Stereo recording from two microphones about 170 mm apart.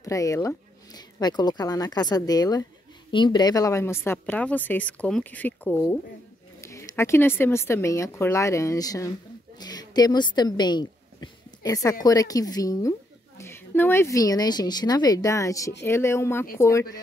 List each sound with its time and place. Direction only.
0.0 s a woman's voice: 20° left (ahead or behind)